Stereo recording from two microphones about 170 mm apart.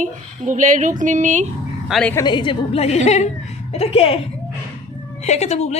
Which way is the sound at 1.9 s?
Centre (ahead or behind).